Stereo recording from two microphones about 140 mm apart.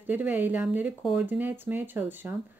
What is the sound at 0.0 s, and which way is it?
Speech, 15° right (ahead or behind).